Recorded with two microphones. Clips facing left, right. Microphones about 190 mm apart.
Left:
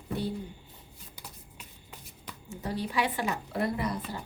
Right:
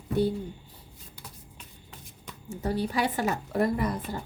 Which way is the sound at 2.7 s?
40° right (ahead or behind).